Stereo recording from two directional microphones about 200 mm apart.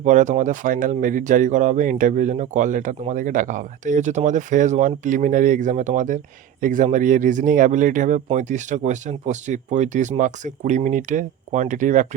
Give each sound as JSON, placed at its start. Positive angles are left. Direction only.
{"t": 0.0, "sound": "speech", "side_deg": -40}